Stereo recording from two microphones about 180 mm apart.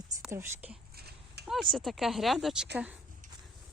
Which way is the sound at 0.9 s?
60° right (ahead or behind).